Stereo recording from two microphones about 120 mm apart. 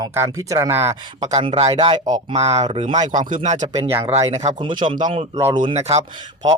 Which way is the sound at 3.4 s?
75° right (ahead or behind).